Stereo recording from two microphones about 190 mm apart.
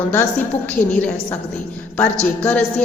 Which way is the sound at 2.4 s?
5° left (ahead or behind).